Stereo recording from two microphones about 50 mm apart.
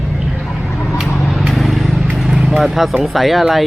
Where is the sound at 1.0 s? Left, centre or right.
Centre.